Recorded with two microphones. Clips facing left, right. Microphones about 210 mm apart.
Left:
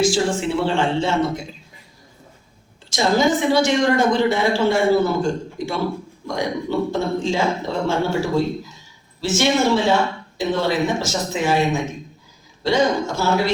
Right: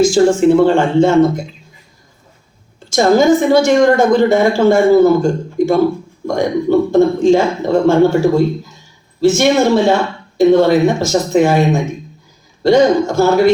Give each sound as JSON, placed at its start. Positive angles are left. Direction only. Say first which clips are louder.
{"t": 0.0, "sound": "a woman's voice", "louder": "right 9 dB", "side_deg": -45}
{"t": 2.9, "sound": "a woman's voice", "louder": "right 8 dB", "side_deg": -45}
{"t": 9.4, "sound": "a woman's voice", "louder": "right 3 dB", "side_deg": -50}